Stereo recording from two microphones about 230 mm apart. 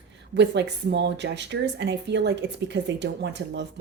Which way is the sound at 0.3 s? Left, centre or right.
Right.